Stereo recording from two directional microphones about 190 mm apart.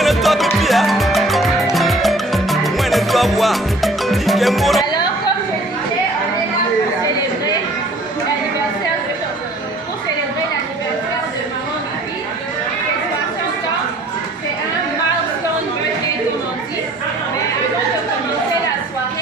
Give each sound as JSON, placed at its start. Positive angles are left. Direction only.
{"t": 0.0, "sound": "music", "side_deg": 0}
{"t": 4.9, "sound": "chatter", "side_deg": 20}